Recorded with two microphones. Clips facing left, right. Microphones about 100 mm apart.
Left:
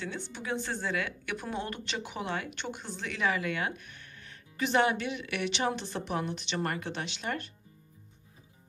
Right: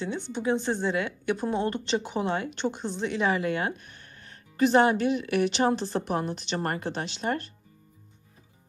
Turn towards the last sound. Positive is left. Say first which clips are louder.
# right 6 dB
turn(degrees=-35)  # may be behind; listen again after turning